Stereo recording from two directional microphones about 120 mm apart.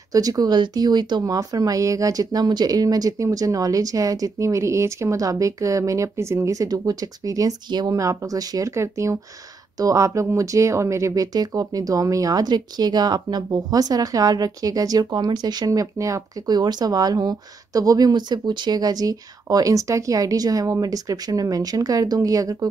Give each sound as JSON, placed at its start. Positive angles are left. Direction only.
{"t": 0.1, "sound": "speech", "side_deg": -30}